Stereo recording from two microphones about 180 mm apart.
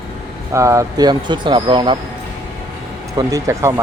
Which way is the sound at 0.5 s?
15° right (ahead or behind).